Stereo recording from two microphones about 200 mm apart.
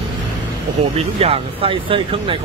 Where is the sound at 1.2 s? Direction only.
25° right (ahead or behind).